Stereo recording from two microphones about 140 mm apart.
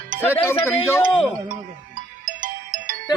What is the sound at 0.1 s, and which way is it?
Music, 75° right (ahead or behind).